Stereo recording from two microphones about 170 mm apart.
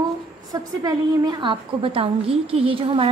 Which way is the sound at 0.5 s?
25° right (ahead or behind).